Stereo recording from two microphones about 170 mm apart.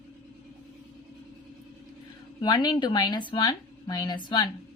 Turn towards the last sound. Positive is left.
turn(degrees=25)  # may be behind; listen again after turning